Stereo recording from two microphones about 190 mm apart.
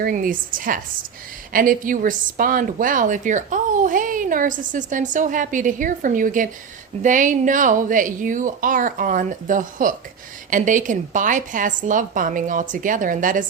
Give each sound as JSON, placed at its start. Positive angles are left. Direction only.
{"t": 0.0, "sound": "a woman's voice", "side_deg": -45}